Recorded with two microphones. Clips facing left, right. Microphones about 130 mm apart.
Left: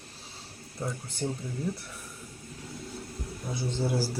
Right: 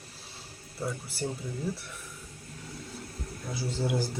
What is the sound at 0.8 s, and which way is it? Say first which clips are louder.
Speech: even; 5° right (ahead or behind).